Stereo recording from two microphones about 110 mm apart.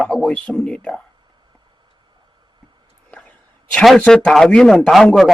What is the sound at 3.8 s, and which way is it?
A man's voice, 5° left (ahead or behind).